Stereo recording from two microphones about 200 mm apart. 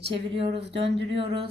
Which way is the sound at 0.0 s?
60° right (ahead or behind).